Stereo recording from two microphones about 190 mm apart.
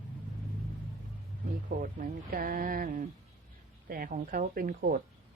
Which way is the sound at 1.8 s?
45° right (ahead or behind).